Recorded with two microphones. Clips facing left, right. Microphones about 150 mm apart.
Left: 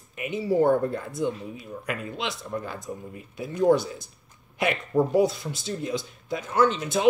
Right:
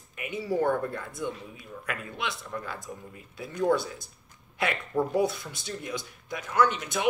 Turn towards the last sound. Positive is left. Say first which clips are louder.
# left 3 dB
turn(degrees=30)  # may be behind; listen again after turning